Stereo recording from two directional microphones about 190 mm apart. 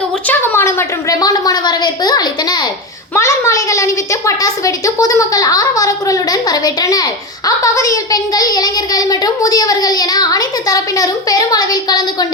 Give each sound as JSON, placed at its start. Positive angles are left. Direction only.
{"t": 0.3, "sound": "a woman's voice", "side_deg": 10}